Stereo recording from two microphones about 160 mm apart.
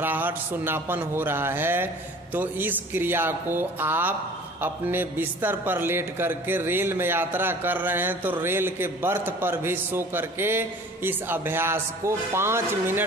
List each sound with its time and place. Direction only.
0.0 s a man's voice: 10° right (ahead or behind)